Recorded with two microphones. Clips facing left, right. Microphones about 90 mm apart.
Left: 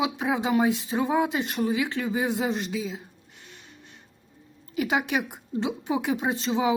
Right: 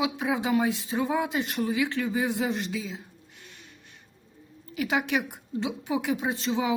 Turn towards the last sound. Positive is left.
turn(degrees=20)  # may be behind; listen again after turning